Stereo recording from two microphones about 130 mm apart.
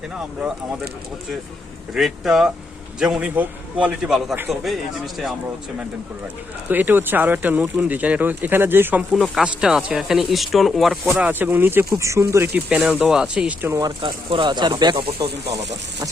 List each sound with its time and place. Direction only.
1.9 s speech: centre (ahead or behind)
6.7 s speech: 15° right (ahead or behind)
9.1 s speech: centre (ahead or behind)
11.2 s speech: 15° right (ahead or behind)
12.5 s speech: 5° right (ahead or behind)
13.8 s speech: 40° right (ahead or behind)